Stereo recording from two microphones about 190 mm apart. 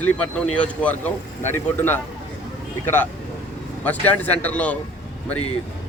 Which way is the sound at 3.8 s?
10° left (ahead or behind).